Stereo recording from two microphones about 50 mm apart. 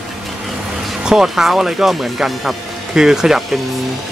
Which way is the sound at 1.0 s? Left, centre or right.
Centre.